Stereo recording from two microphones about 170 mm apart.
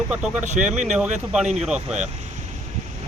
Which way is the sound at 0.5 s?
45° right (ahead or behind).